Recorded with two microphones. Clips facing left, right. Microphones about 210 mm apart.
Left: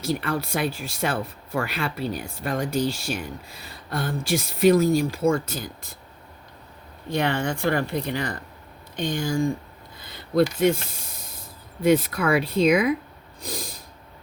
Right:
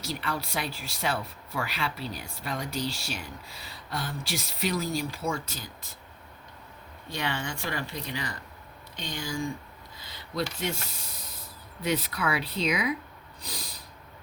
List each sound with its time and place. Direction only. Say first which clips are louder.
0.0 s speech: left 7 dB; 50° left (ahead or behind)
7.1 s speech: left 9 dB; 55° left (ahead or behind)
13.4 s snort: left 9 dB; 50° left (ahead or behind)